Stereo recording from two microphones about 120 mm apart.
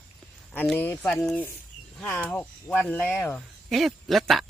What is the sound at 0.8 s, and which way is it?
Speech, 20° left (ahead or behind).